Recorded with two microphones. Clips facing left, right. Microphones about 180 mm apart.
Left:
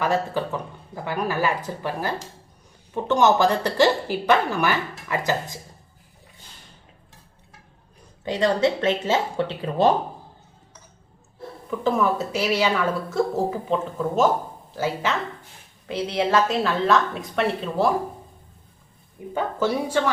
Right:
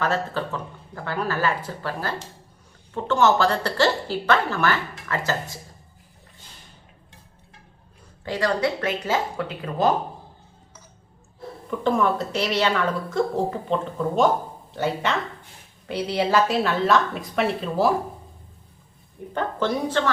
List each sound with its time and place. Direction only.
0.0 s a woman's voice: 15° left (ahead or behind)
8.2 s speech: 20° left (ahead or behind)
11.7 s a woman's voice: 5° left (ahead or behind)
19.3 s a woman's voice: 10° left (ahead or behind)